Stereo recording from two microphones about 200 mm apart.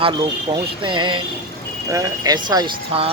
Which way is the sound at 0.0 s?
25° right (ahead or behind).